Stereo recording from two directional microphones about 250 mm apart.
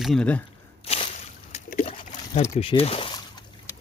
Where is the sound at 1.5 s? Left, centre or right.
Left.